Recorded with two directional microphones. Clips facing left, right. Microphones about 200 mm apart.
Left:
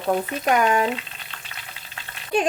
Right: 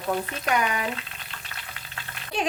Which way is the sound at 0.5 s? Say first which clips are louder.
Left 6 dB; 50° left (ahead or behind).